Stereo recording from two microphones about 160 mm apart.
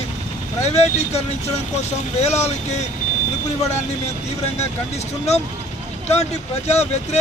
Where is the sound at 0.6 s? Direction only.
45° left (ahead or behind).